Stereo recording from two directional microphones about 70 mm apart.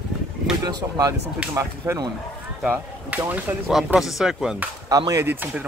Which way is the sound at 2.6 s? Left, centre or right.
Right.